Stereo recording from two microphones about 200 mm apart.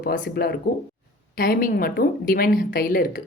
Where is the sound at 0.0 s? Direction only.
50° left (ahead or behind).